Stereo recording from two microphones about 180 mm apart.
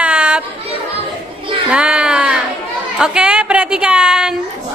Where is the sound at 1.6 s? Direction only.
5° right (ahead or behind).